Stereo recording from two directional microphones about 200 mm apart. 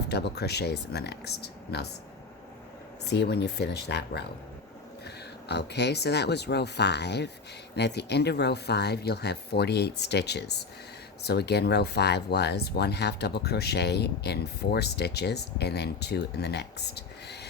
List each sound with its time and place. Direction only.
0.1 s speech: 55° left (ahead or behind)
3.1 s speech: 55° left (ahead or behind)